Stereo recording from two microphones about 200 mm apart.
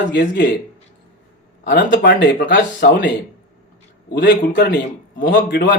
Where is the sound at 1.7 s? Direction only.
55° left (ahead or behind).